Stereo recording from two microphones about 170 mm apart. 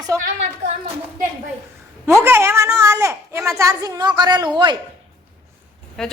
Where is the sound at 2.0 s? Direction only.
15° right (ahead or behind).